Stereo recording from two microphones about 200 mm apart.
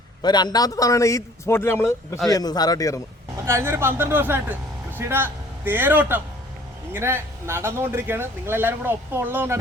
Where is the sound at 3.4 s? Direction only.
15° right (ahead or behind).